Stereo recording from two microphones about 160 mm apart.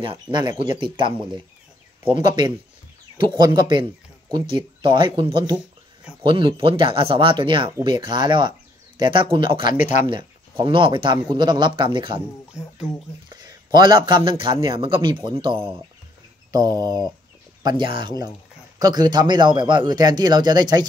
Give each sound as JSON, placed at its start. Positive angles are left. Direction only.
{"t": 0.0, "sound": "speech", "side_deg": -30}
{"t": 3.2, "sound": "a man's voice", "side_deg": -30}
{"t": 9.8, "sound": "speech", "side_deg": 50}
{"t": 10.0, "sound": "speech", "side_deg": -30}
{"t": 13.3, "sound": "a man's voice", "side_deg": -25}